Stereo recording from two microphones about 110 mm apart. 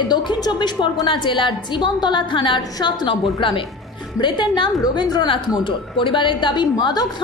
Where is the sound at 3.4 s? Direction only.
55° left (ahead or behind).